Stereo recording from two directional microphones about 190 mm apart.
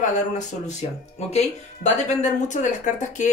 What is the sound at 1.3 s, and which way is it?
Speech, 35° left (ahead or behind).